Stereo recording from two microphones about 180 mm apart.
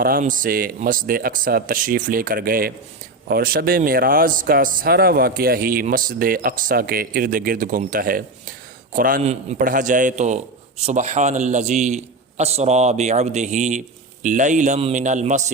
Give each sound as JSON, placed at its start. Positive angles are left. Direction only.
{"t": 0.0, "sound": "a man's voice", "side_deg": -50}
{"t": 9.2, "sound": "a man's voice", "side_deg": -35}